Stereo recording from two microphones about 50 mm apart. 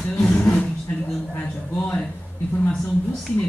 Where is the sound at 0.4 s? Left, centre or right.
Centre.